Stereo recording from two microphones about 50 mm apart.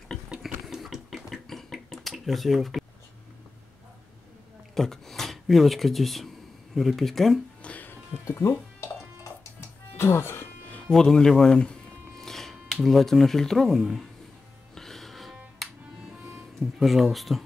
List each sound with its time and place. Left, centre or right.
0.7 s a sound: centre
4.7 s speech: centre
7.6 s music: left
8.3 s speech: left
9.9 s speech: left
10.9 s music: centre
12.7 s speech: centre
14.8 s music: centre
16.7 s speech: centre